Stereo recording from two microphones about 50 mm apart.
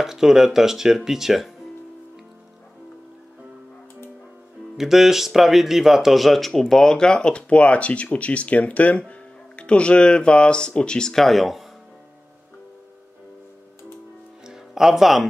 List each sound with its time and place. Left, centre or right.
0.0 s speech: centre
4.7 s speech: centre
14.4 s music: centre